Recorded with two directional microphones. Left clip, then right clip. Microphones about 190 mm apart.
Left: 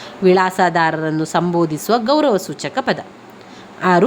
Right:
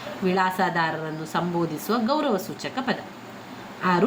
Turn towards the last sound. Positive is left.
turn(degrees=50)  # may be behind; listen again after turning